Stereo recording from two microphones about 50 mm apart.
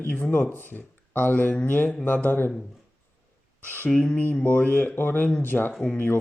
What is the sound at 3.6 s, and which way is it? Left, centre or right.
Speech, left.